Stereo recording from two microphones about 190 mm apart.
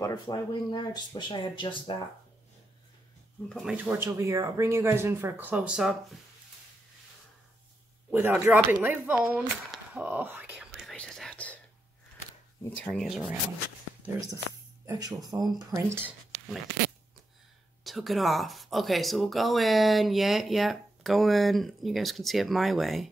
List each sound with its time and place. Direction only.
0.0 s speech: 20° left (ahead or behind)
3.4 s speech: centre (ahead or behind)
8.1 s speech: 10° right (ahead or behind)
9.9 s whispering: 10° right (ahead or behind); by 11.6 s 5° left (ahead or behind)
12.8 s speech: centre (ahead or behind)
14.9 s speech: 20° right (ahead or behind)
17.8 s speech: centre (ahead or behind)